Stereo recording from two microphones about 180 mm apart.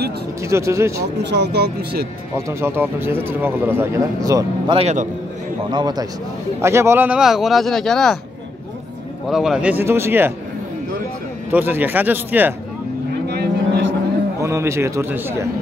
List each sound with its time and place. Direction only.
0.4 s speech: 15° right (ahead or behind)
1.2 s speech: 70° right (ahead or behind)
2.3 s speech: 15° right (ahead or behind)
4.7 s a man's voice: 40° right (ahead or behind)
5.7 s a man's voice: 25° right (ahead or behind); by 8.2 s centre (ahead or behind)
9.3 s speech: 5° right (ahead or behind)
11.5 s speech: 10° right (ahead or behind)
13.3 s vehicle: 75° right (ahead or behind)
14.4 s speech: 15° right (ahead or behind)